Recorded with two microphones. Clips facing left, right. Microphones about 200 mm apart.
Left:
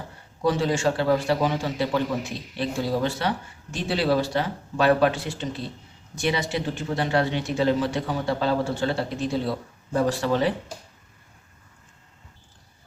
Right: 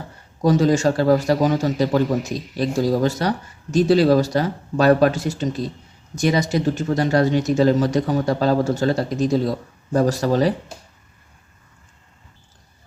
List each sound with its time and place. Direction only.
0.4 s a man's voice: 40° right (ahead or behind)